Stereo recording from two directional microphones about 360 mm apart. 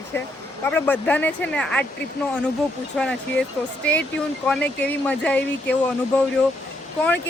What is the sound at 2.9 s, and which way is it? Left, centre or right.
Speech, centre.